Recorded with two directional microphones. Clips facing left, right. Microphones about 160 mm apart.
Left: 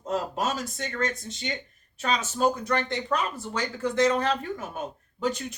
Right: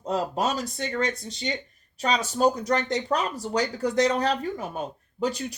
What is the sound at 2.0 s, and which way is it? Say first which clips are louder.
Speech: right 2 dB; 35° right (ahead or behind).